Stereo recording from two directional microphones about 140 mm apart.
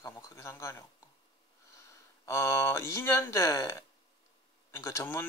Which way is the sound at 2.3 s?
20° left (ahead or behind).